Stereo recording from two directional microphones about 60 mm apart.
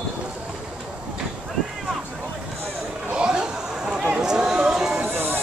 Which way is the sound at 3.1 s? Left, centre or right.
Centre.